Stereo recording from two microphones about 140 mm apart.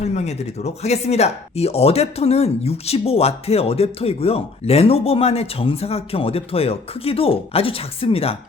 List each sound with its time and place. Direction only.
0.0 s speech: 50° left (ahead or behind)